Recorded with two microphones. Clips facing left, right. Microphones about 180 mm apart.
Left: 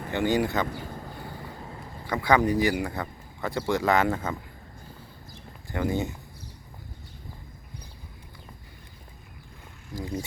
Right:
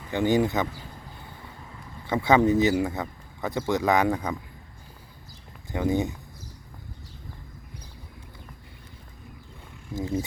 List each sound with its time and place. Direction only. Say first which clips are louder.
0.3 s speech: right 3 dB; 20° right (ahead or behind)
2.0 s speech: right 3 dB; 25° right (ahead or behind)
5.7 s speech: right 3 dB; 20° right (ahead or behind)
9.9 s speech: right 4 dB; 20° right (ahead or behind)